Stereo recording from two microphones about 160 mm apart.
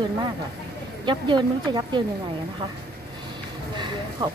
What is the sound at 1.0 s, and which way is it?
Speech, 30° right (ahead or behind).